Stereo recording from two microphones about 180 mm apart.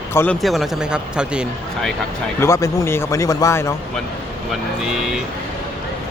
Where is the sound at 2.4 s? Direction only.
15° left (ahead or behind).